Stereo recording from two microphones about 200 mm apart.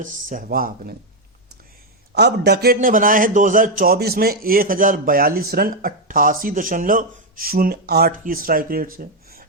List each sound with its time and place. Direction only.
0.0 s a man's voice: 40° right (ahead or behind)
2.1 s a man's voice: 55° right (ahead or behind)
2.7 s a man's voice: 40° right (ahead or behind)